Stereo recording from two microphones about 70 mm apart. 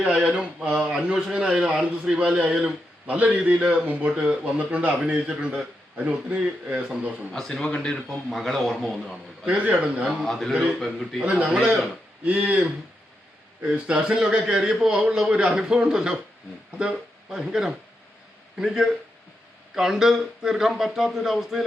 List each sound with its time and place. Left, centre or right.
0.0 s a man's voice: centre
3.2 s a man's voice: centre
7.3 s speech: centre
8.3 s speech: centre
9.5 s a man's voice: centre
10.2 s speech: centre
11.2 s a man's voice: centre
12.2 s a man's voice: centre